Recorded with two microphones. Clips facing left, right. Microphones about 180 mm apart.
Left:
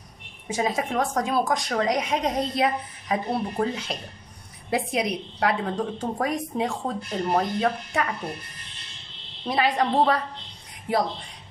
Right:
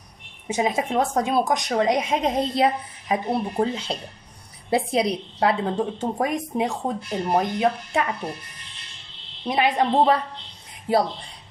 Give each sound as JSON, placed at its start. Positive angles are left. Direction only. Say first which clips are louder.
{"t": 0.5, "sound": "a woman's voice", "louder": "right 2 dB", "side_deg": -20}
{"t": 9.5, "sound": "a woman's voice", "louder": "right 2 dB", "side_deg": -20}